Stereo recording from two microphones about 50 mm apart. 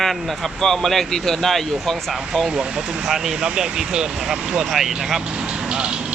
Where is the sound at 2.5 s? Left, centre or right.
Centre.